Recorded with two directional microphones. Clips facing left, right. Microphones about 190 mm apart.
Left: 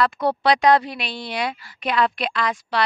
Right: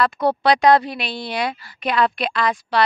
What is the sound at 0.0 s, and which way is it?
A woman's voice, 40° right (ahead or behind).